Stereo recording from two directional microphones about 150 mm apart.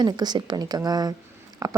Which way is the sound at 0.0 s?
30° right (ahead or behind).